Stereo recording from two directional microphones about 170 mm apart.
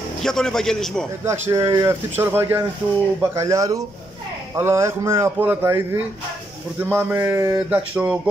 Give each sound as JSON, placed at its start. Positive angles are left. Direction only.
{"t": 0.2, "sound": "a man's voice", "side_deg": 5}
{"t": 1.2, "sound": "a man's voice", "side_deg": -20}